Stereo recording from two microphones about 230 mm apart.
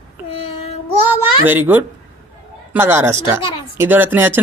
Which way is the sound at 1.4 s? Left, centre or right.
Centre.